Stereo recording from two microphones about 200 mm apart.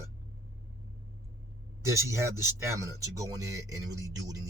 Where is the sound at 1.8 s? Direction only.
15° right (ahead or behind).